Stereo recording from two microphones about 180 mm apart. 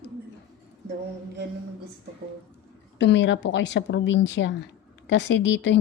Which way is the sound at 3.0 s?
85° left.